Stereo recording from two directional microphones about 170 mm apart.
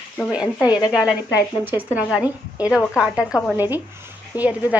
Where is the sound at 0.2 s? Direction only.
Centre (ahead or behind).